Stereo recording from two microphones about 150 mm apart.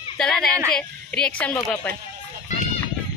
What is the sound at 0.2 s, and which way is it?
Speech, 5° left (ahead or behind).